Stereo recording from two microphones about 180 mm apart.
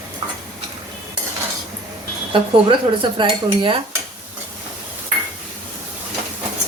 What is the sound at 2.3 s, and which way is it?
Speech, 25° right (ahead or behind).